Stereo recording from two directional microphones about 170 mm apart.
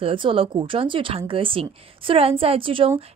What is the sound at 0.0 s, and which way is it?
A woman's voice, 30° right (ahead or behind).